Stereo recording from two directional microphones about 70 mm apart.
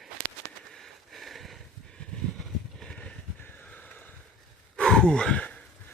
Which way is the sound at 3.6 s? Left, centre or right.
Left.